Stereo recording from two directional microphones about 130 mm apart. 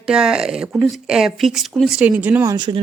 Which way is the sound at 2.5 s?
35° right (ahead or behind).